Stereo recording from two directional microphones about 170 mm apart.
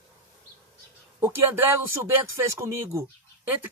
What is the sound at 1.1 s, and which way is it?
Speech, 15° right (ahead or behind).